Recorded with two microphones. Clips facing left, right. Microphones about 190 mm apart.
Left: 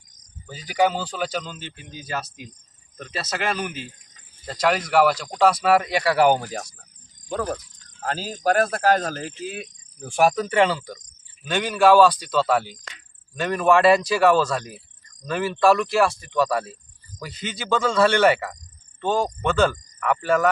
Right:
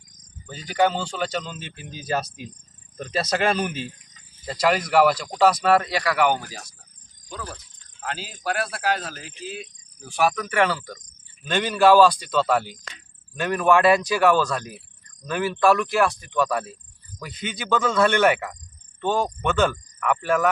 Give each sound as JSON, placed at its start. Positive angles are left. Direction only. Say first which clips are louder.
{"t": 0.7, "sound": "speech", "louder": "even", "side_deg": 5}
{"t": 1.8, "sound": "speech", "louder": "right 5 dB", "side_deg": -35}
{"t": 4.4, "sound": "speech", "louder": "even", "side_deg": 0}
{"t": 5.8, "sound": "speech", "louder": "left 3 dB", "side_deg": 20}
{"t": 6.4, "sound": "speech", "louder": "left 8 dB", "side_deg": 60}
{"t": 8.0, "sound": "speech", "louder": "left 6 dB", "side_deg": 40}
{"t": 10.5, "sound": "cricket", "louder": "left 2 dB", "side_deg": 20}
{"t": 11.4, "sound": "speech", "louder": "even", "side_deg": 0}